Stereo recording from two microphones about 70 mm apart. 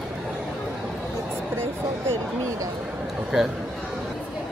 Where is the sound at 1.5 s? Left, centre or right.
Right.